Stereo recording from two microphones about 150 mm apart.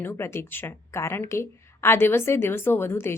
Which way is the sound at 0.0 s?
15° left (ahead or behind).